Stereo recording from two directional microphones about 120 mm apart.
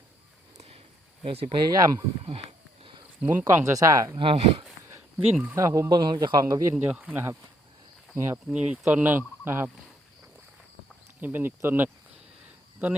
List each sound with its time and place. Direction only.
0.5 s a sound: 55° right (ahead or behind)
1.2 s speech: 55° right (ahead or behind)
1.7 s a man's voice: 30° right (ahead or behind)
3.2 s a man's voice: 20° right (ahead or behind)
4.2 s speech: 45° right (ahead or behind)
5.1 s speech: 10° right (ahead or behind)
5.5 s a man's voice: 25° right (ahead or behind)
6.7 s speech: 10° right (ahead or behind)
8.4 s speech: 10° right (ahead or behind)
11.2 s speech: 15° right (ahead or behind)